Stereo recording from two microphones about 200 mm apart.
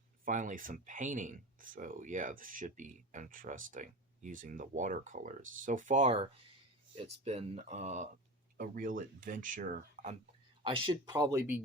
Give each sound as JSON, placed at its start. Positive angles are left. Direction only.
{"t": 0.3, "sound": "speech", "side_deg": -40}
{"t": 8.5, "sound": "speech", "side_deg": -45}
{"t": 10.6, "sound": "speech", "side_deg": -25}